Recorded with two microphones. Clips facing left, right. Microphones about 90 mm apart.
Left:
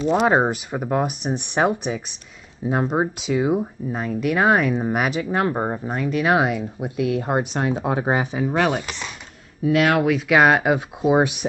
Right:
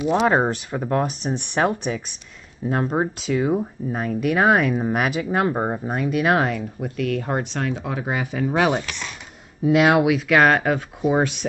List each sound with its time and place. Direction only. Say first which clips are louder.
0.1 s speech: left 1 dB; 10° left (ahead or behind)
6.3 s speech: left 1 dB; 10° left (ahead or behind)
7.8 s speech: left 5 dB; 30° left (ahead or behind)
8.5 s speech: right 3 dB; 10° right (ahead or behind)
10.0 s speech: even; centre (ahead or behind)